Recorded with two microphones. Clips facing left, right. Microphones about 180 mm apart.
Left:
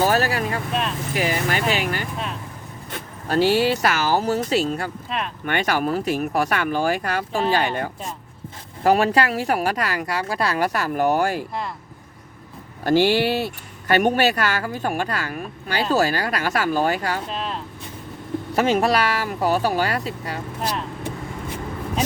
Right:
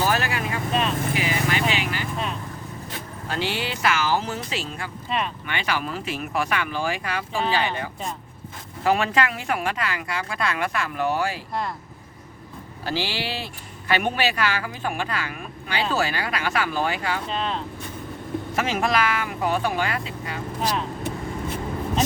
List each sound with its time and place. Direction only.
0.0 s vehicle: 35° left (ahead or behind)
0.7 s vehicle: centre (ahead or behind)
1.1 s vehicle: 45° left (ahead or behind)
3.2 s speech: 40° left (ahead or behind)
5.0 s speech: centre (ahead or behind)
5.5 s speech: 45° left (ahead or behind)
12.8 s speech: 50° left (ahead or behind)
17.2 s speech: centre (ahead or behind)
18.5 s speech: 35° left (ahead or behind)